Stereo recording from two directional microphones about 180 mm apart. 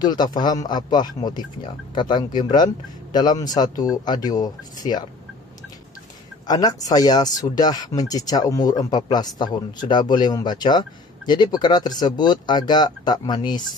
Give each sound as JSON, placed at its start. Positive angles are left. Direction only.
{"t": 0.0, "sound": "speech", "side_deg": 25}
{"t": 6.4, "sound": "speech", "side_deg": 20}